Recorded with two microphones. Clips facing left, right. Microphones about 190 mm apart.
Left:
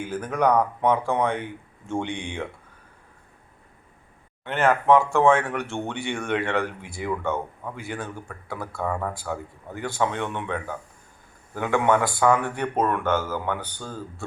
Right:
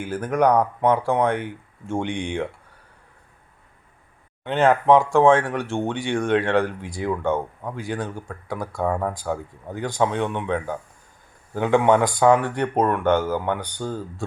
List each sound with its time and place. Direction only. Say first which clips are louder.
0.1 s speech: right 3 dB; 10° right (ahead or behind)
4.4 s speech: right 3 dB; 15° right (ahead or behind)